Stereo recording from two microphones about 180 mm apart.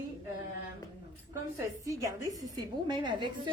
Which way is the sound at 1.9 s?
15° right (ahead or behind).